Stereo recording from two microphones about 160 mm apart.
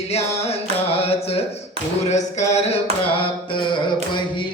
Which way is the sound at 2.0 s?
45° left (ahead or behind).